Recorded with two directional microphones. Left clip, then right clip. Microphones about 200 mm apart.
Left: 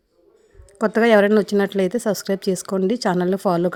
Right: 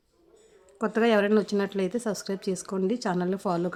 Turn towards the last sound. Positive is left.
turn(degrees=35)  # may be behind; listen again after turning